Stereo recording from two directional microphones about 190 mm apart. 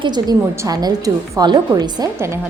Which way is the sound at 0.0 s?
20° right (ahead or behind).